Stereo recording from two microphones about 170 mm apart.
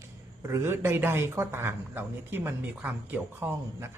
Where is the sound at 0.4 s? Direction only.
15° right (ahead or behind).